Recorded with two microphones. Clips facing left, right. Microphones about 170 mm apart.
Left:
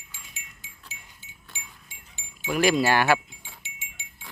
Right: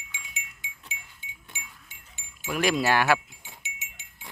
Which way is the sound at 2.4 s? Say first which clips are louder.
Left 3 dB; centre (ahead or behind).